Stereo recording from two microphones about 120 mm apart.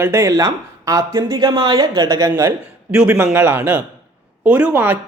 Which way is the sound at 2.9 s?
10° right (ahead or behind).